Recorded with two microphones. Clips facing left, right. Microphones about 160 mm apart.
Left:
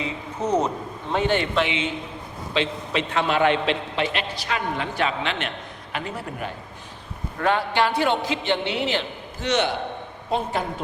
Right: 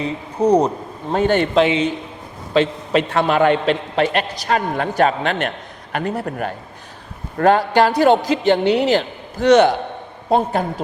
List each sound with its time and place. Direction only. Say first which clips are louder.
0.0 s a man's voice: right 9 dB; 35° right (ahead or behind); by 6.5 s 55° right (ahead or behind)
7.3 s a man's voice: right 8 dB; 40° right (ahead or behind)